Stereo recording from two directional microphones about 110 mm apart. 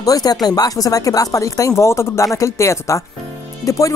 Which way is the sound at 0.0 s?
35° left (ahead or behind).